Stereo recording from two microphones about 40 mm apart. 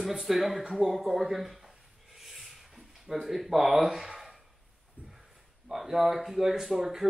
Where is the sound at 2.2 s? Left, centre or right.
Centre.